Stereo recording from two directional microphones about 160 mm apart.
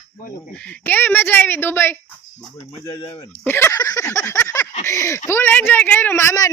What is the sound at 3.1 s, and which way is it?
Speech, 15° left (ahead or behind).